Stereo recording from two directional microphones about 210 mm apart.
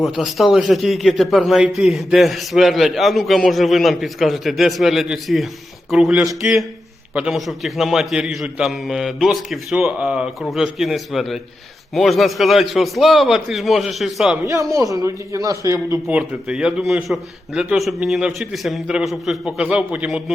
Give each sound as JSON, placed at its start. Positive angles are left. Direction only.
{"t": 0.0, "sound": "a man's voice", "side_deg": 0}
{"t": 14.7, "sound": "speech", "side_deg": -15}
{"t": 16.0, "sound": "a man's voice", "side_deg": -5}